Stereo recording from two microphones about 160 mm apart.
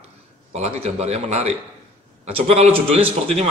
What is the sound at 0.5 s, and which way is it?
Speech, 40° right (ahead or behind).